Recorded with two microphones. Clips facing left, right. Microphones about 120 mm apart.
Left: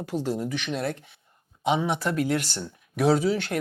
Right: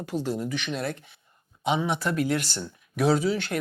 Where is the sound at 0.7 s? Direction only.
40° left (ahead or behind).